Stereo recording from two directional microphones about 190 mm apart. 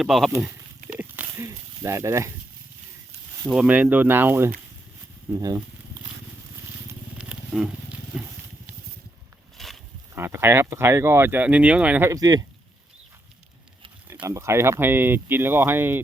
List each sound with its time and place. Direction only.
0.0 s speech: centre (ahead or behind)
0.3 s speech: 15° right (ahead or behind)
0.9 s a sound: 10° right (ahead or behind)
3.4 s speech: 5° right (ahead or behind)
7.2 s wild animals: 5° right (ahead or behind)
9.6 s a sound: centre (ahead or behind)
10.2 s speech: 15° right (ahead or behind)
14.1 s speech: 15° right (ahead or behind)